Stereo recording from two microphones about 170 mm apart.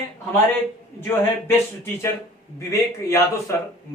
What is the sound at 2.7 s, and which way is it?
Speech, 15° left (ahead or behind).